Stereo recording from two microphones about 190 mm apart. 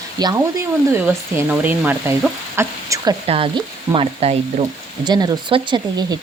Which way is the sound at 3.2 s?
30° right (ahead or behind).